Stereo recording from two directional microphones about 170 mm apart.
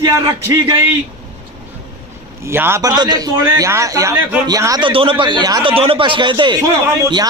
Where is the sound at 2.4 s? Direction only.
15° right (ahead or behind).